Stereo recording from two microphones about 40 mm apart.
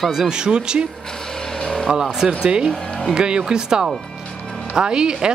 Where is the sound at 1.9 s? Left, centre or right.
Centre.